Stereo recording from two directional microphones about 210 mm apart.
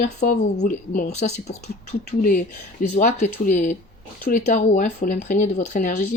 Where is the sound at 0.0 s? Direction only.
35° left (ahead or behind).